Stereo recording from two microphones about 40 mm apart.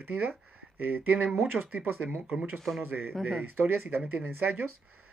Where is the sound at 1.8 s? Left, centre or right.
Right.